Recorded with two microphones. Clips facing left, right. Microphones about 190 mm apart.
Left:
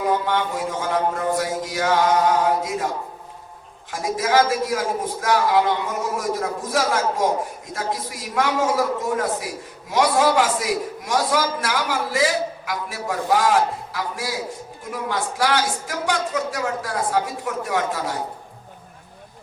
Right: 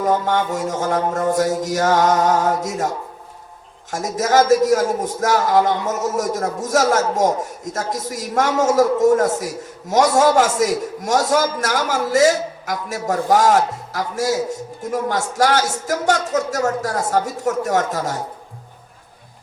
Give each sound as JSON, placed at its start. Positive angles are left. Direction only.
{"t": 0.0, "sound": "a man's voice", "side_deg": -45}
{"t": 3.9, "sound": "a man's voice", "side_deg": -45}